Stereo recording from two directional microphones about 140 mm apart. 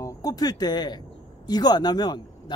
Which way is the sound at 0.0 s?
25° left (ahead or behind).